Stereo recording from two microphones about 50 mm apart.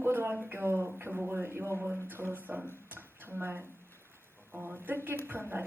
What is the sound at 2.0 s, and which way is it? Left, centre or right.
Speech, right.